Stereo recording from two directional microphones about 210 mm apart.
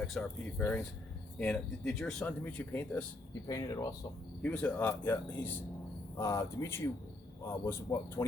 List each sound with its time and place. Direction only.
0.0 s speech: centre (ahead or behind)
3.4 s speech: 15° left (ahead or behind)
4.4 s speech: 5° left (ahead or behind)